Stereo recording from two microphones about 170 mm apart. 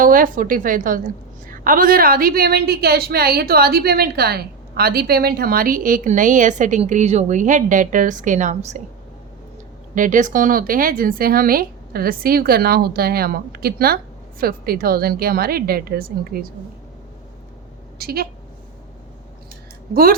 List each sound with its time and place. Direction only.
0.0 s a woman's voice: 55° right (ahead or behind)
9.9 s a woman's voice: 50° right (ahead or behind)
17.9 s a woman's voice: 65° right (ahead or behind)
19.9 s a woman's voice: 60° right (ahead or behind)